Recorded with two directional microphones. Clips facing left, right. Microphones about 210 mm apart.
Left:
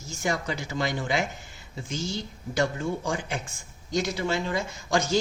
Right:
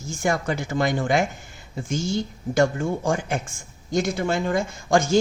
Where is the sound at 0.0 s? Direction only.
50° right (ahead or behind).